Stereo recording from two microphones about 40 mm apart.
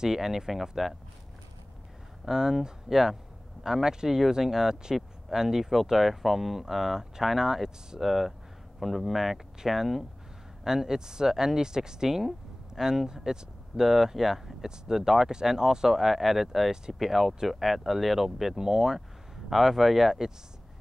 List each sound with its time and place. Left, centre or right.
0.0 s speech: centre
2.2 s speech: centre
15.9 s speech: centre